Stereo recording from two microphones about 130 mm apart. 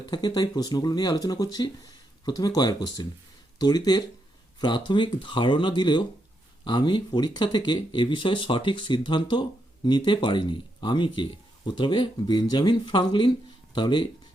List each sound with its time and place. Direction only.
0.1 s speech: 35° left (ahead or behind)